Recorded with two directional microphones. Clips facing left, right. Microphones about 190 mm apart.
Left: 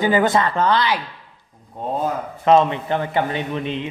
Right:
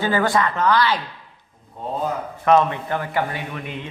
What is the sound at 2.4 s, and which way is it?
A man's voice, 20° left (ahead or behind).